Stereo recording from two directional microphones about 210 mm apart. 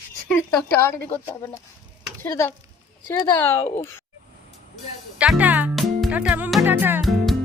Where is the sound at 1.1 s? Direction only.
10° left (ahead or behind).